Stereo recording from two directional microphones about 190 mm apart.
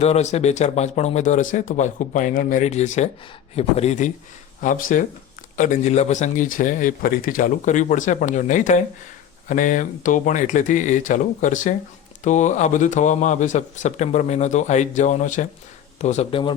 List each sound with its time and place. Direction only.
0.0 s speech: 35° left (ahead or behind)